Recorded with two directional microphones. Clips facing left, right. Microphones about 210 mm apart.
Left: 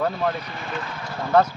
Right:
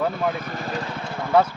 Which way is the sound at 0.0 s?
5° right (ahead or behind).